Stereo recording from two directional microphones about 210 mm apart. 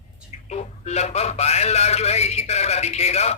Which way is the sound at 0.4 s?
30° left (ahead or behind).